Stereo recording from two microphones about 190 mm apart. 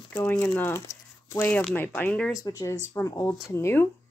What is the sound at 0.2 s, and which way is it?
Speech, 10° left (ahead or behind).